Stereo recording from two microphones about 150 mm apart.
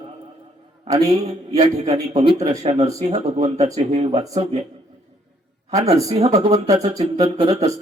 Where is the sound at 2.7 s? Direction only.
40° right (ahead or behind).